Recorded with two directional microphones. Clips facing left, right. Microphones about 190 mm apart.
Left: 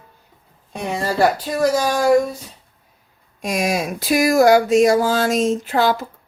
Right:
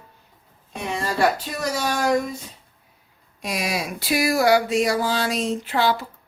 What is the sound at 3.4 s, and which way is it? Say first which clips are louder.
Speech: left 6 dB; 45° left (ahead or behind).